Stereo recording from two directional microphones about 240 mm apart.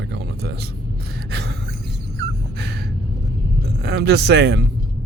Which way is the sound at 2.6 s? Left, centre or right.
Right.